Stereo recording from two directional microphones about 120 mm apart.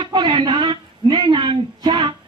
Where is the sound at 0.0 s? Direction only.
45° right (ahead or behind).